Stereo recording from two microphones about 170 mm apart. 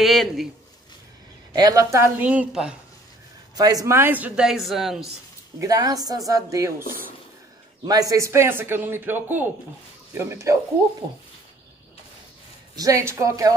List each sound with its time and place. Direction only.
0.0 s speech: centre (ahead or behind)
1.5 s a man's voice: 20° right (ahead or behind); by 2.7 s 5° right (ahead or behind)
3.5 s a man's voice: 20° right (ahead or behind); by 5.1 s centre (ahead or behind)
5.6 s a woman's voice: 20° right (ahead or behind)
7.8 s a man's voice: 20° right (ahead or behind)
12.7 s a woman's voice: 20° right (ahead or behind)